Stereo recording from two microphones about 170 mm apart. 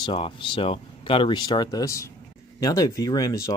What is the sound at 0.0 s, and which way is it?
Speech, 30° left (ahead or behind).